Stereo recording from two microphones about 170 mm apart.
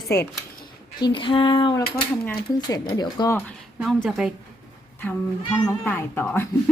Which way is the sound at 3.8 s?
5° right (ahead or behind).